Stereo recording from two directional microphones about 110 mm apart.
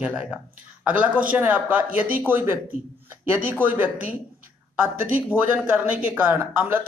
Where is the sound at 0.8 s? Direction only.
15° right (ahead or behind).